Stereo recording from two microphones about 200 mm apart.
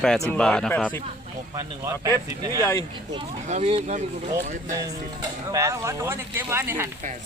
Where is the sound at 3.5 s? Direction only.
35° right (ahead or behind).